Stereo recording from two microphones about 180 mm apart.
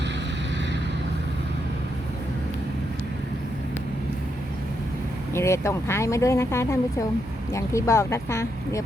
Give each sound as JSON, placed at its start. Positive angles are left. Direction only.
{"t": 5.3, "sound": "speech", "side_deg": 15}